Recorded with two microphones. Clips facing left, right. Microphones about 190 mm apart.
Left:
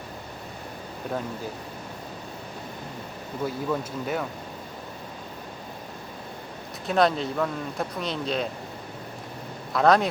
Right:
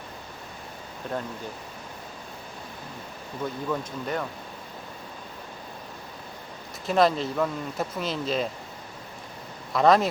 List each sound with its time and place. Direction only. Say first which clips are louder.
3.4 s speech: left 2 dB; 5° left (ahead or behind)
6.8 s speech: even; centre (ahead or behind)
9.7 s speech: even; centre (ahead or behind)